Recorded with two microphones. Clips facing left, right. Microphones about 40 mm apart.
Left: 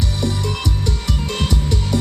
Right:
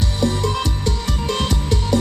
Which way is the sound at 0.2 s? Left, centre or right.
Right.